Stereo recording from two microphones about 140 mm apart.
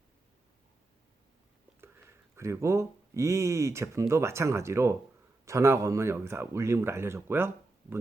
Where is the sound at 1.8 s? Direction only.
15° right (ahead or behind).